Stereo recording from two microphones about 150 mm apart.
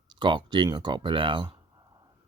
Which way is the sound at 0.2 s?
30° right (ahead or behind).